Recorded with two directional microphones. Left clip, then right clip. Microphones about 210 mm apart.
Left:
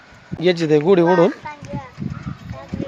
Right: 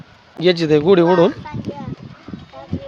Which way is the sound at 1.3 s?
55° right (ahead or behind).